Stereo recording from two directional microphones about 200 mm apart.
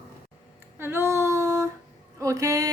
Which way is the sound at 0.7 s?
10° right (ahead or behind).